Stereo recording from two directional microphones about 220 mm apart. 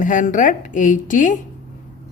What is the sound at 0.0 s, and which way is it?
A woman's voice, 35° left (ahead or behind).